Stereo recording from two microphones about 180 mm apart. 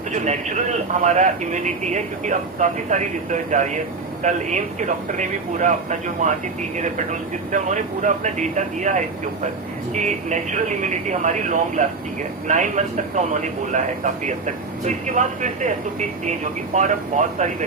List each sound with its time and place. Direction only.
0.1 s a man's voice: 40° right (ahead or behind)